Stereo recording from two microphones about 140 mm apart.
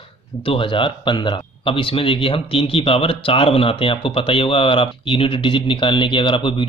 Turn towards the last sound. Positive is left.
turn(degrees=35)  # may be behind; listen again after turning